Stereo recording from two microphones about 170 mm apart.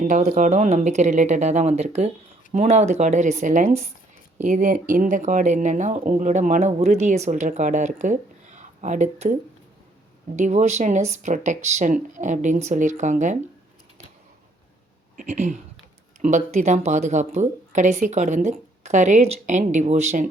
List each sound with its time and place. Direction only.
0.1 s speech: 45° right (ahead or behind)
10.3 s speech: 45° right (ahead or behind)
15.1 s speech: 45° right (ahead or behind)